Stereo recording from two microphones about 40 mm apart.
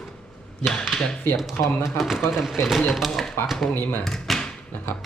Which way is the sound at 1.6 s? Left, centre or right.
Centre.